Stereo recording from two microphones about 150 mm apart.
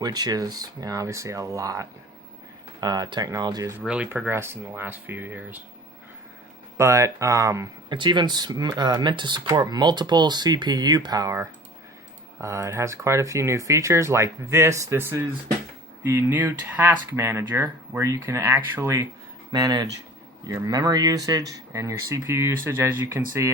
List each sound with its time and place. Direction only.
0.0 s speech: 25° right (ahead or behind)
3.8 s speech: 10° right (ahead or behind)
6.7 s speech: 20° right (ahead or behind)